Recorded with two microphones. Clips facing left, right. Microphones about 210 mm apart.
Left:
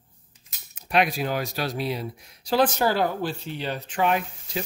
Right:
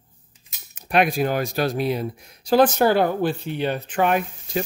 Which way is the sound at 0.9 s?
50° right (ahead or behind).